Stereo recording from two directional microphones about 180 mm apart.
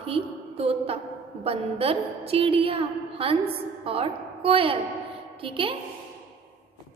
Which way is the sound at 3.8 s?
30° right (ahead or behind).